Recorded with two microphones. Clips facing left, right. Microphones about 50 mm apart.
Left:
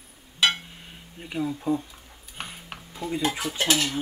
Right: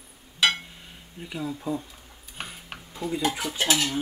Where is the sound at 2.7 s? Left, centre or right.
Centre.